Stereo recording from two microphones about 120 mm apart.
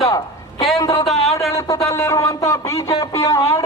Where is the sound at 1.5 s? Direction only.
25° left (ahead or behind).